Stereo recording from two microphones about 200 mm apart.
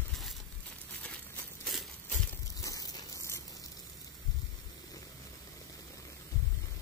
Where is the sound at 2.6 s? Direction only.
20° left (ahead or behind).